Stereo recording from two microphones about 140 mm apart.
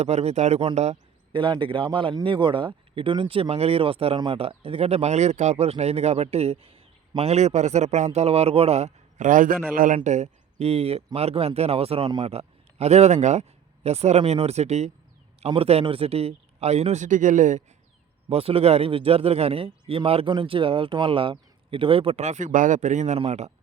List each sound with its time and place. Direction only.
0.0 s speech: 50° right (ahead or behind)
1.3 s a man's voice: 35° right (ahead or behind); by 17.6 s 65° right (ahead or behind)
18.3 s speech: 45° right (ahead or behind)